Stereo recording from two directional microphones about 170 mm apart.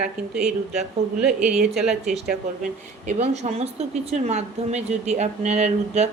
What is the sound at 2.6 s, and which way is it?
Speech, 50° right (ahead or behind).